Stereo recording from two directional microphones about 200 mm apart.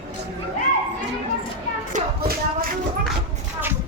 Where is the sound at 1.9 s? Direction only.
45° right (ahead or behind).